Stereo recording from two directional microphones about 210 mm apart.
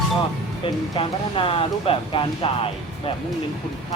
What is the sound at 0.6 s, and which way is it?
Speech, 25° left (ahead or behind).